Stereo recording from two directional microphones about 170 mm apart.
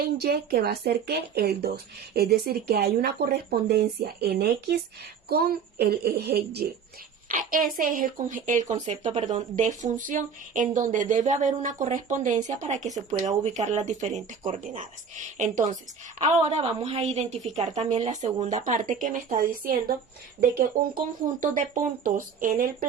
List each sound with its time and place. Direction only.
0.0 s speech: 65° right (ahead or behind)
7.3 s a woman's voice: 50° right (ahead or behind)
15.4 s a woman's voice: 45° right (ahead or behind)